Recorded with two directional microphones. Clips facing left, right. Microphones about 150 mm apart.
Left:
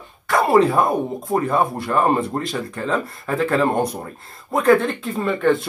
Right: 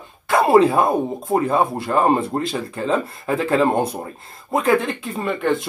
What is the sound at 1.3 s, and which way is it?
Speech, 25° right (ahead or behind).